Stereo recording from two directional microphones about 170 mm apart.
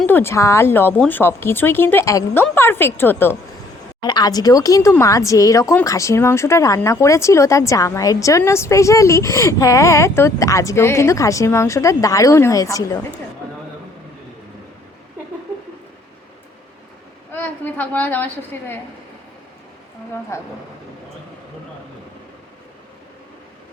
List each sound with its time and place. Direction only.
0.0 s speech: 10° left (ahead or behind)
4.0 s speech: 25° left (ahead or behind)
17.3 s a woman's voice: 10° left (ahead or behind)
20.3 s speech: 15° left (ahead or behind)